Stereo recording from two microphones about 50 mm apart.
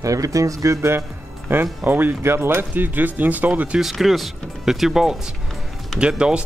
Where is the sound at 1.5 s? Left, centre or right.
Right.